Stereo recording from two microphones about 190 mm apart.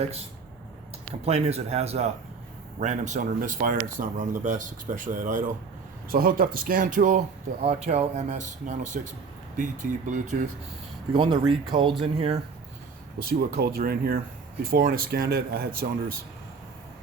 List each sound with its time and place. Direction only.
1.2 s speech: 35° right (ahead or behind)
11.1 s speech: 25° right (ahead or behind)
13.1 s speech: 50° right (ahead or behind)